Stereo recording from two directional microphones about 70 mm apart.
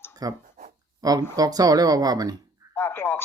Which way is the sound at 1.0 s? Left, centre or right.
Right.